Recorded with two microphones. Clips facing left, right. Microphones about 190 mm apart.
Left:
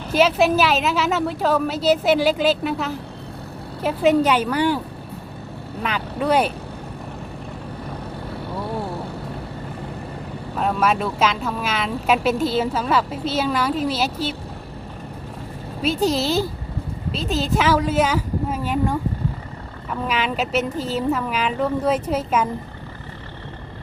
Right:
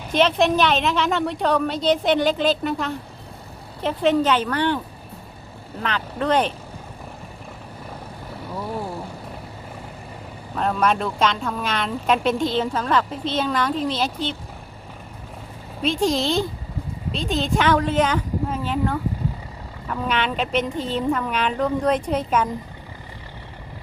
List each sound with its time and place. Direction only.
0.1 s a woman's voice: 5° left (ahead or behind)
5.8 s a woman's voice: 10° left (ahead or behind)
10.5 s speech: 5° left (ahead or behind)
15.8 s a woman's voice: 5° left (ahead or behind)